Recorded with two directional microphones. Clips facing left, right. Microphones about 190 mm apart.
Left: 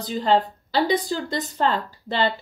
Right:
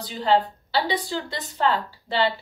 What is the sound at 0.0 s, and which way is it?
Speech, 40° left (ahead or behind).